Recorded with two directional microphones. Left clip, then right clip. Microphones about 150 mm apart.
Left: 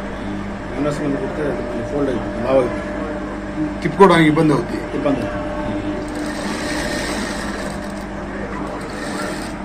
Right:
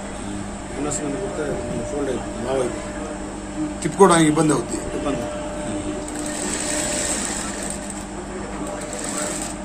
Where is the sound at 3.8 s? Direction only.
20° right (ahead or behind).